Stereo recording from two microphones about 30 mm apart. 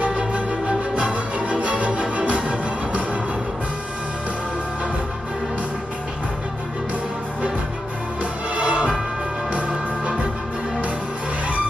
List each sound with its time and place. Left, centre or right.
0.3 s music: right
8.2 s music: right